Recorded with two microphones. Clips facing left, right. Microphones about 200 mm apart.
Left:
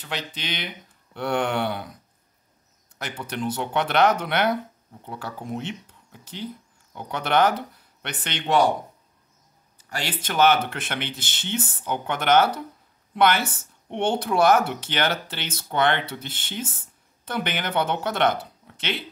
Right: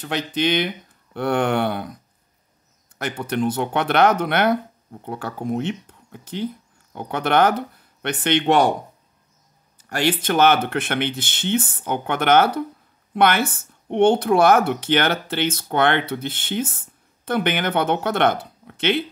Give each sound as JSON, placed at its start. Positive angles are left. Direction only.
{"t": 0.0, "sound": "speech", "side_deg": -50}
{"t": 3.0, "sound": "speech", "side_deg": -50}
{"t": 9.8, "sound": "speech", "side_deg": -55}